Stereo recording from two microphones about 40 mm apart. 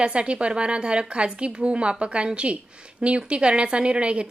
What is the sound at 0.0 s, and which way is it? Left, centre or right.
A woman's voice, right.